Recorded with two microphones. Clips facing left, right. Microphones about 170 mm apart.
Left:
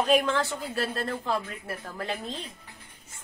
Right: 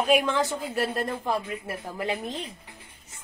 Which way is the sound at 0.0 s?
10° right (ahead or behind).